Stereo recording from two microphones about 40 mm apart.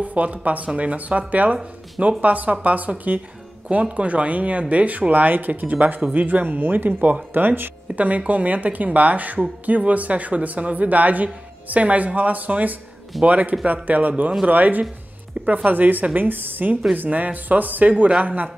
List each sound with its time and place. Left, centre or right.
0.0 s speech: right
7.3 s a woman's voice: right
7.9 s a woman's voice: right